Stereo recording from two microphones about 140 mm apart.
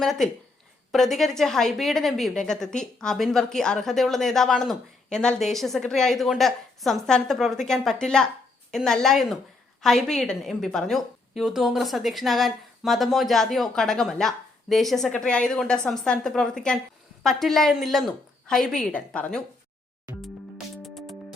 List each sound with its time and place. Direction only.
0.0 s a woman's voice: centre (ahead or behind)
20.8 s music: centre (ahead or behind)